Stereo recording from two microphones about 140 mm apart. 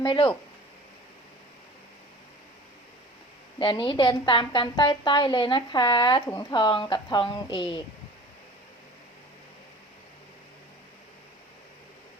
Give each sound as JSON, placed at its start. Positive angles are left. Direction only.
{"t": 0.0, "sound": "a woman's voice", "side_deg": 35}
{"t": 3.6, "sound": "a woman's voice", "side_deg": 35}